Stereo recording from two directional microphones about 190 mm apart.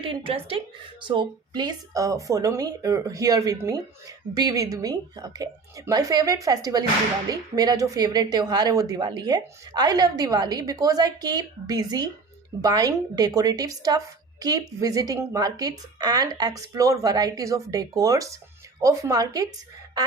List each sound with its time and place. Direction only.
0.0 s a woman's voice: 30° right (ahead or behind)